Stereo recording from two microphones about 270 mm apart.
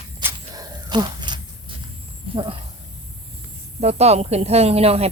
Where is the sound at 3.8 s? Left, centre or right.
Right.